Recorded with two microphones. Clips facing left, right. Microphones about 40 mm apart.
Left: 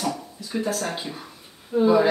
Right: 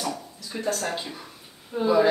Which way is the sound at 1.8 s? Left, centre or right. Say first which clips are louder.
Left 2 dB; centre.